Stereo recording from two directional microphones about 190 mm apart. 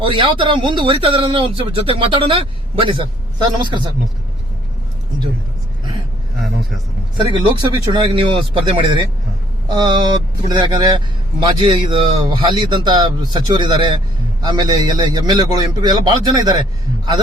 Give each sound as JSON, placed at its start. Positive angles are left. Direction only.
{"t": 0.0, "sound": "speech", "side_deg": -25}
{"t": 6.4, "sound": "vehicle", "side_deg": 0}
{"t": 7.7, "sound": "speech", "side_deg": -25}